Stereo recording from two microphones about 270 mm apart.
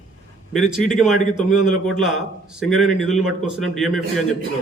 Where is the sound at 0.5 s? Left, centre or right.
Centre.